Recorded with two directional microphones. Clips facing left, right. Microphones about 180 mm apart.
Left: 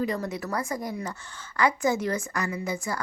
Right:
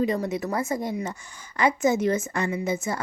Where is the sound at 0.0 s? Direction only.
20° right (ahead or behind).